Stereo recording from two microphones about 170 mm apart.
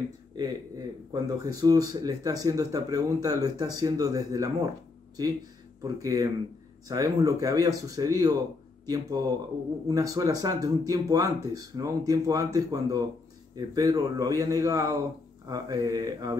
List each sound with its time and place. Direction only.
0.4 s speech: 20° right (ahead or behind)
5.8 s speech: 20° right (ahead or behind)